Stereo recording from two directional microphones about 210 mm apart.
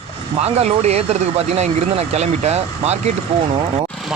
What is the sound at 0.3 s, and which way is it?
Speech, 30° right (ahead or behind).